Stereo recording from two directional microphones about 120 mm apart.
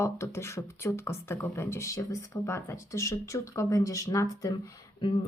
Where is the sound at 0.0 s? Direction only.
25° left (ahead or behind).